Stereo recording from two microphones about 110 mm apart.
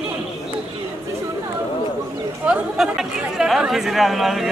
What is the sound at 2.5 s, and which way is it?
Speech, 5° right (ahead or behind).